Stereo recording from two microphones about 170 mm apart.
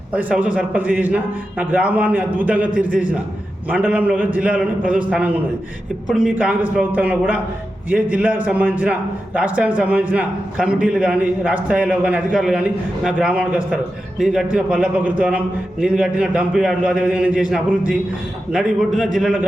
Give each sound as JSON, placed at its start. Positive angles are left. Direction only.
{"t": 0.1, "sound": "a man's voice", "side_deg": -10}